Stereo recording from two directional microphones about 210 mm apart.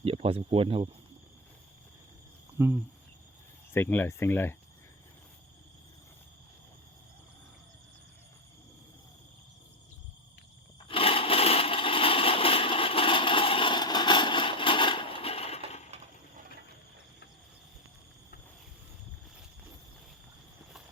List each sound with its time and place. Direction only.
0.0 s speech: 25° right (ahead or behind)
2.6 s speech: 10° right (ahead or behind)
3.7 s speech: 10° left (ahead or behind)
10.8 s a sound: 25° left (ahead or behind)
15.9 s coin: 30° right (ahead or behind)